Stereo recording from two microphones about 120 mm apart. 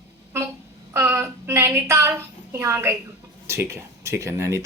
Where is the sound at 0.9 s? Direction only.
20° right (ahead or behind).